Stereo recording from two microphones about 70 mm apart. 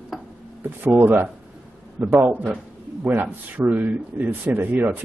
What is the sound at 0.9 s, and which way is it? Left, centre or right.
A man's voice, right.